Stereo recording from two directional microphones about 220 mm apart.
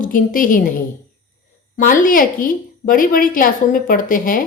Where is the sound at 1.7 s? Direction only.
40° left (ahead or behind).